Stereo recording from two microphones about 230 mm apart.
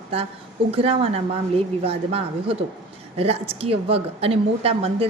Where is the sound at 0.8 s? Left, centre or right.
Right.